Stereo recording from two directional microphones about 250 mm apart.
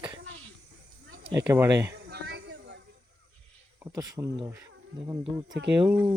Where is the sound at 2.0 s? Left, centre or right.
Right.